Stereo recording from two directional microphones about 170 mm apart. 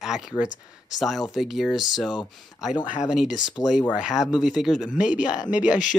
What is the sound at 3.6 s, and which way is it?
Speech, 25° left (ahead or behind).